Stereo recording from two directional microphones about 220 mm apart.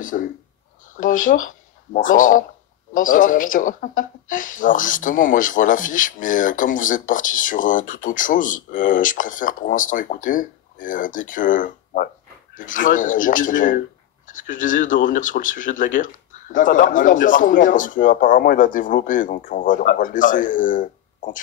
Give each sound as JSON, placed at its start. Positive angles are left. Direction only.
{"t": 0.0, "sound": "speech", "side_deg": 35}